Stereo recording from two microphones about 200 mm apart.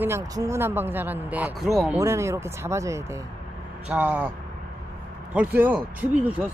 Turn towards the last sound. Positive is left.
turn(degrees=-5)  # may be behind; listen again after turning